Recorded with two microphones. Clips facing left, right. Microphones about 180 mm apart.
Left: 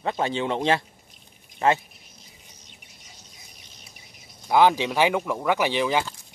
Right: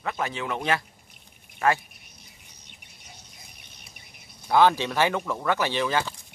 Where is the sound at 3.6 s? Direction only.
60° right (ahead or behind).